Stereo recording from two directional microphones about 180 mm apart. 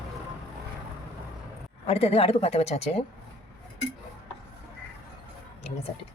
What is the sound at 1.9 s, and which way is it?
A woman's voice, 35° left (ahead or behind).